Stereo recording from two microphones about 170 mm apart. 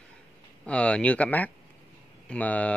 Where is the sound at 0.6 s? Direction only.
5° left (ahead or behind).